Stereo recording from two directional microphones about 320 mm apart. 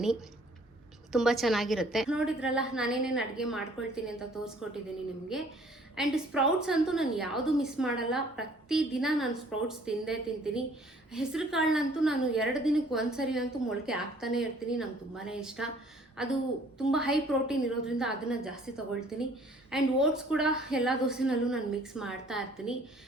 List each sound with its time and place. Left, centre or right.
1.1 s a woman's voice: centre
6.0 s a woman's voice: centre
19.7 s a woman's voice: centre